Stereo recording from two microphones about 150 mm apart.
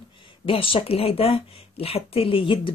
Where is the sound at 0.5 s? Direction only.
35° left (ahead or behind).